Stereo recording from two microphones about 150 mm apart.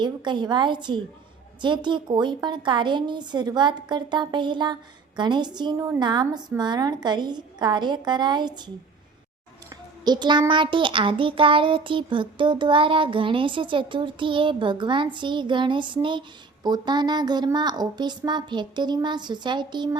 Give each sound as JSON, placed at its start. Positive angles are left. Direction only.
{"t": 0.0, "sound": "child singing", "side_deg": -30}
{"t": 1.6, "sound": "a woman's voice", "side_deg": -30}
{"t": 10.0, "sound": "child singing", "side_deg": -30}
{"t": 16.6, "sound": "a woman's voice", "side_deg": -30}